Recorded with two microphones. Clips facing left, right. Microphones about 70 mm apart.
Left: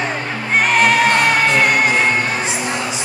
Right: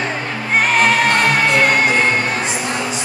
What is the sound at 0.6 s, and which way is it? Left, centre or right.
Music, centre.